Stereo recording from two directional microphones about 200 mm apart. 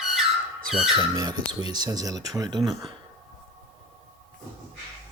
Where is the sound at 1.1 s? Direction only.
20° right (ahead or behind).